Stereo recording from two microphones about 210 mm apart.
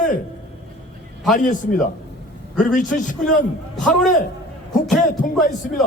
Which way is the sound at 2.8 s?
40° left (ahead or behind).